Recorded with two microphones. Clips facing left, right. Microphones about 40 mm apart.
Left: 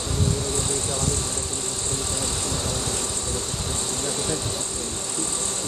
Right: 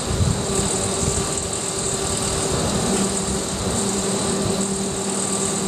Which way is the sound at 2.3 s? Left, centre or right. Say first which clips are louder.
Right 6 dB; right.